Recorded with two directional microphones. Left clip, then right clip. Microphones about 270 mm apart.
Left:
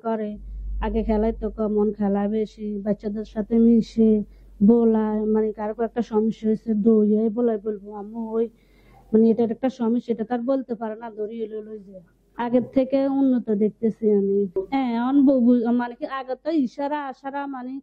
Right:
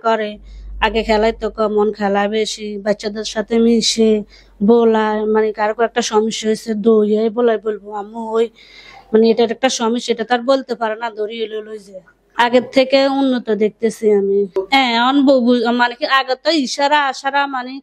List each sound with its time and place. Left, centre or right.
0.0 s speech: centre
8.1 s speech: right
9.1 s speech: centre